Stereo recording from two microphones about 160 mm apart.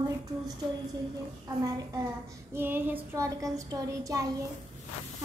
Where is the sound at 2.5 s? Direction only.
15° right (ahead or behind).